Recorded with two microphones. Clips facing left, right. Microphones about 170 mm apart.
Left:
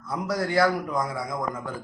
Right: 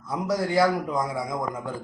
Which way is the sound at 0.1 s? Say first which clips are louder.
Right 1 dB; 20° right (ahead or behind).